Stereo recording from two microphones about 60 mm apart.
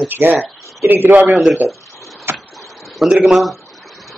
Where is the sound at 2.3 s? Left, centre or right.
Right.